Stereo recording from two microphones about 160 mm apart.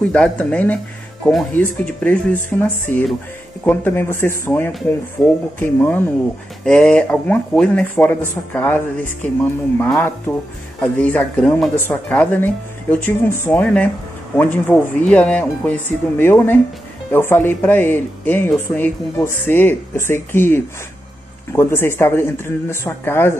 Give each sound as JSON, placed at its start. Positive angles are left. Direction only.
{"t": 0.1, "sound": "speech", "side_deg": 5}
{"t": 5.2, "sound": "speech", "side_deg": 0}
{"t": 5.6, "sound": "speech", "side_deg": 15}